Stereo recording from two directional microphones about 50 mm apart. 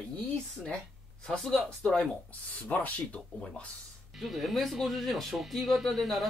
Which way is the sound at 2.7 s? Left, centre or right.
Left.